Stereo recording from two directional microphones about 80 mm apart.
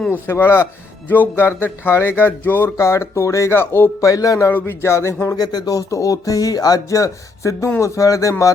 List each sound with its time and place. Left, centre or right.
0.3 s speech: left
2.7 s speech: left
4.0 s speech: left
4.5 s speech: left
5.4 s speech: left